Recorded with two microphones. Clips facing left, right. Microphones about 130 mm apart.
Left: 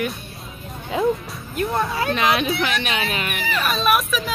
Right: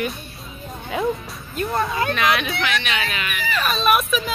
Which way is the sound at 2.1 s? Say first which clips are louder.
Left 3 dB; 30° left (ahead or behind).